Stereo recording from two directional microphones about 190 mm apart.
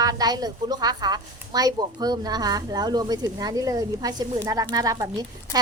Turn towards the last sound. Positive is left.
turn(degrees=-20)  # may be behind; listen again after turning